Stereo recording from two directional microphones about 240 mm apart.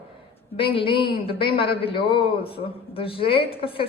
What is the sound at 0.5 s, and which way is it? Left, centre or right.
A man's voice, left.